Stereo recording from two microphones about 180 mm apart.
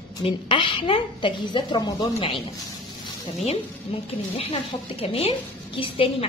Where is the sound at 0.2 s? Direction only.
30° left (ahead or behind).